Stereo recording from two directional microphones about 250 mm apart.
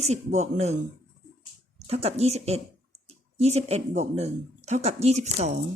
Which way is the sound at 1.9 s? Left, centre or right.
Right.